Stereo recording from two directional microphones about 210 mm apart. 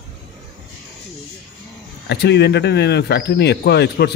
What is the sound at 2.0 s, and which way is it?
Speech, 50° left (ahead or behind).